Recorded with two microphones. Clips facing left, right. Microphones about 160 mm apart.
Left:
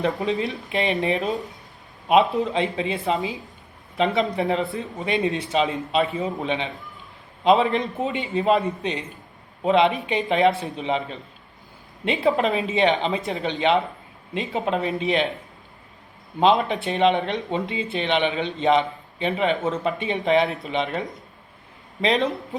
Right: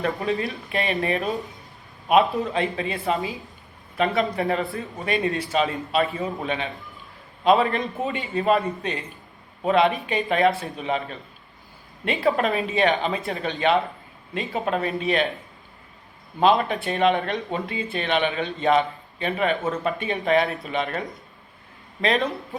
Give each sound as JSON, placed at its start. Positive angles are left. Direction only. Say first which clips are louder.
{"t": 0.2, "sound": "a man's voice", "louder": "left 1 dB", "side_deg": 20}
{"t": 2.4, "sound": "a man's voice", "louder": "left 2 dB", "side_deg": 20}
{"t": 16.4, "sound": "a man's voice", "louder": "left 1 dB", "side_deg": 20}